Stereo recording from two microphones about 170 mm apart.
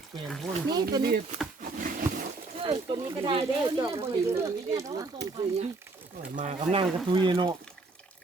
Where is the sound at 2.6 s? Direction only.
30° right (ahead or behind).